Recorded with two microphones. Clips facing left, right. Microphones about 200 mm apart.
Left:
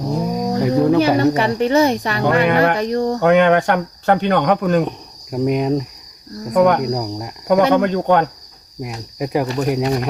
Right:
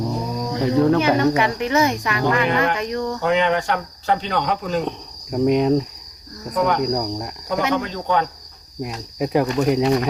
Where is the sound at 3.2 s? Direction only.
60° left (ahead or behind).